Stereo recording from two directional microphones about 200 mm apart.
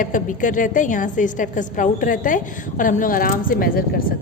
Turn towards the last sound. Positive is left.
turn(degrees=45)  # may be behind; listen again after turning